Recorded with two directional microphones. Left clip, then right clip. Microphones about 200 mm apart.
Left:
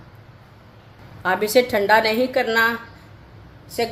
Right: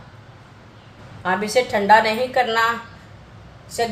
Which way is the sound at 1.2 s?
50° left (ahead or behind).